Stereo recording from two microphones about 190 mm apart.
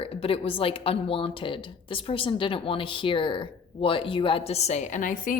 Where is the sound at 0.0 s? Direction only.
30° left (ahead or behind).